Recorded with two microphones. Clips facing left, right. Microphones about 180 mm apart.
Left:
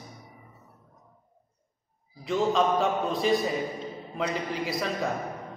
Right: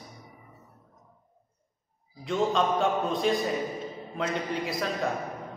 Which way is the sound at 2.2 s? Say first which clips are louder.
Left 1 dB; centre (ahead or behind).